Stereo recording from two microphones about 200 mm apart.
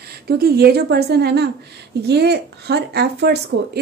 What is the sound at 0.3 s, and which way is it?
A woman's voice, 50° right (ahead or behind).